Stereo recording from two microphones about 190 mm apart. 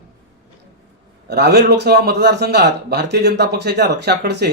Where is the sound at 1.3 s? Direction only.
60° right (ahead or behind).